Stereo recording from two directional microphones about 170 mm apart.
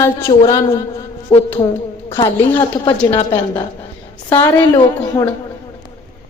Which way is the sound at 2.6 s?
30° left (ahead or behind).